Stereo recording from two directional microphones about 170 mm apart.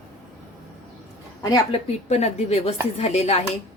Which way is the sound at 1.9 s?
40° left (ahead or behind).